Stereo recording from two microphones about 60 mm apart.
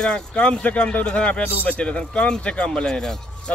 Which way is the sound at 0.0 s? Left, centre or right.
Centre.